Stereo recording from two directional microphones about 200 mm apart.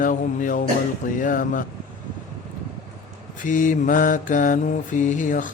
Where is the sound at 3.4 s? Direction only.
40° left (ahead or behind).